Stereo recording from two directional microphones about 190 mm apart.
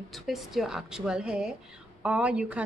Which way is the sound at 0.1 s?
Centre (ahead or behind).